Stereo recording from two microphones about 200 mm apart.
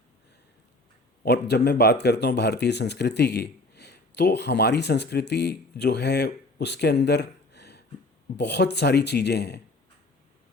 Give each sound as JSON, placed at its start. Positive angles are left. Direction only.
{"t": 1.2, "sound": "speech", "side_deg": 55}